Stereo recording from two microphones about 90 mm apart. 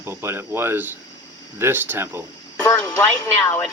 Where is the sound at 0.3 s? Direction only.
25° right (ahead or behind).